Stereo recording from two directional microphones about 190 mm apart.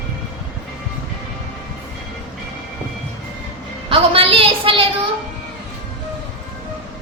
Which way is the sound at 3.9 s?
30° right (ahead or behind).